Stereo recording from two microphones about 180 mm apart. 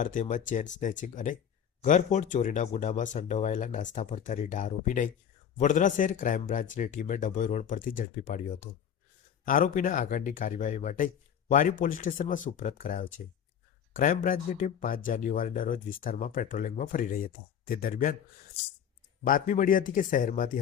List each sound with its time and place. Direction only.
0.0 s speech: 45° left (ahead or behind)
19.2 s speech: 50° left (ahead or behind)